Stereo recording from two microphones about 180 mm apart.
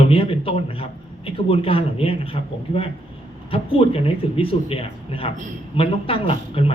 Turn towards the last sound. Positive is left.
turn(degrees=30)  # may be behind; listen again after turning